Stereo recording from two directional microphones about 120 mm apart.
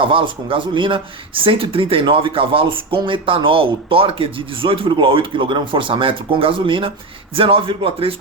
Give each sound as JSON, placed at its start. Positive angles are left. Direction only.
{"t": 0.0, "sound": "speech", "side_deg": -45}